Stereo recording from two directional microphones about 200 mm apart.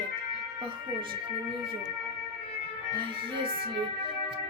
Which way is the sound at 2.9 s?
25° right (ahead or behind).